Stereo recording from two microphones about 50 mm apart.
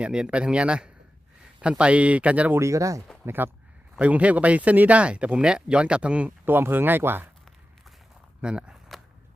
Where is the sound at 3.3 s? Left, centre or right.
Right.